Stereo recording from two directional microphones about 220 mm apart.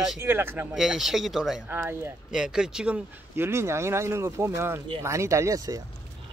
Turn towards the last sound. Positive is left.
turn(degrees=-15)  # may be behind; listen again after turning